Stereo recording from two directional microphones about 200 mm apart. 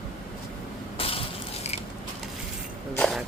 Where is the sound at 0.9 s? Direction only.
30° left (ahead or behind).